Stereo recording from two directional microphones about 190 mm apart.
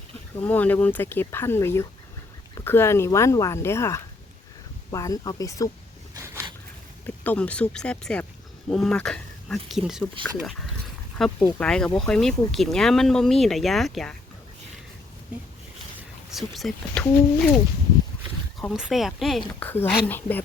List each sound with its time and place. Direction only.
0.4 s speech: 10° left (ahead or behind)
6.1 s a sound: 15° right (ahead or behind)
7.3 s speech: 5° left (ahead or behind)
11.4 s speech: 10° left (ahead or behind)
16.3 s speech: centre (ahead or behind)
18.7 s speech: centre (ahead or behind)
19.5 s speech: 10° left (ahead or behind)